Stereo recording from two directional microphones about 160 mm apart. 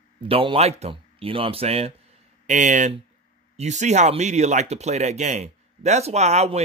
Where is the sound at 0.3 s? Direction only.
35° right (ahead or behind).